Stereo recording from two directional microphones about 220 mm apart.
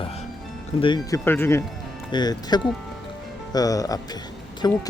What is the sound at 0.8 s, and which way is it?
Speech, 20° left (ahead or behind).